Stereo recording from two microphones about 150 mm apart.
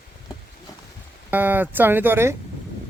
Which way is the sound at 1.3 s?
10° right (ahead or behind).